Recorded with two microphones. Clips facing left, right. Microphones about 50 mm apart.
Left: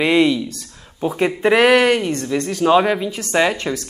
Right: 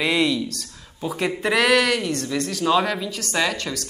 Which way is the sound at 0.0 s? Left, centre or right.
Centre.